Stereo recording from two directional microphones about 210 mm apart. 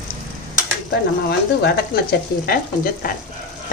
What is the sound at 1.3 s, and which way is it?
Speech, 50° left (ahead or behind).